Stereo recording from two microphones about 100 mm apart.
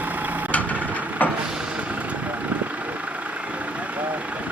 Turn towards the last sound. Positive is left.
turn(degrees=-15)  # may be behind; listen again after turning